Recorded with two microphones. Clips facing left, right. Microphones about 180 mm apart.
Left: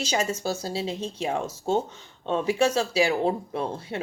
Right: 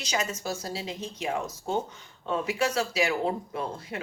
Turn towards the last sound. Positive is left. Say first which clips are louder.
# left 4 dB
turn(degrees=30)  # may be behind; listen again after turning